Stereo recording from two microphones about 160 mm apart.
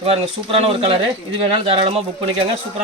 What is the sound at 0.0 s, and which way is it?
Speech, 40° right (ahead or behind).